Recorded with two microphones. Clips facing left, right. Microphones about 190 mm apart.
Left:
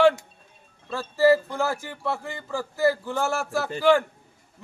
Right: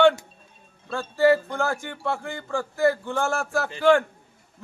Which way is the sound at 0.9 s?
5° left (ahead or behind).